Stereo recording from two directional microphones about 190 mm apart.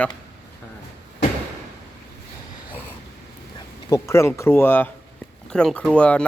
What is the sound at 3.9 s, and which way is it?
Speech, 15° left (ahead or behind).